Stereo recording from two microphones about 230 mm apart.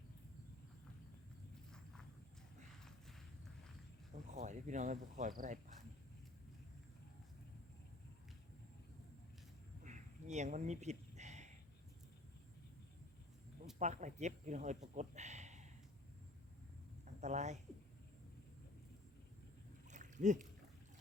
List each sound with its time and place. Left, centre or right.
1.7 s walk: centre
4.1 s speech: right
9.8 s a sound: right
13.7 s speech: right
17.2 s speech: right
19.9 s a sound: right